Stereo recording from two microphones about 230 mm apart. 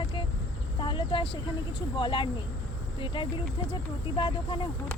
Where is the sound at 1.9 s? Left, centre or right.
Left.